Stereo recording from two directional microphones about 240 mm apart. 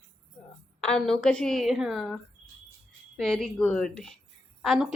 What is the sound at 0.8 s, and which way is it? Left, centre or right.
A woman's voice, centre.